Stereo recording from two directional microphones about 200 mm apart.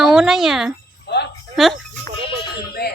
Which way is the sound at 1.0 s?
55° left (ahead or behind).